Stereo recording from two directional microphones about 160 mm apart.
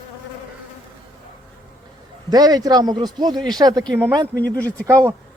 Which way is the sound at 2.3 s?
25° right (ahead or behind).